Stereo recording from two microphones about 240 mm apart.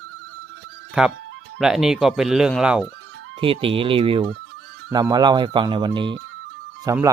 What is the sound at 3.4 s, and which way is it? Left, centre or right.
Speech, right.